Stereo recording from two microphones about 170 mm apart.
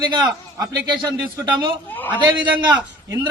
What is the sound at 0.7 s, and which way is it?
A man's voice, 25° right (ahead or behind).